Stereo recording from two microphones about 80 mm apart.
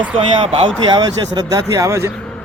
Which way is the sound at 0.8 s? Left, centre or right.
Right.